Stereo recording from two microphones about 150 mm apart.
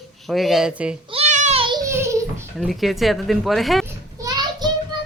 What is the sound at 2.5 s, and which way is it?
A woman's voice, centre (ahead or behind).